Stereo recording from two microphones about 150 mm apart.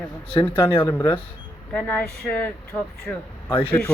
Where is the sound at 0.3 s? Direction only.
15° left (ahead or behind).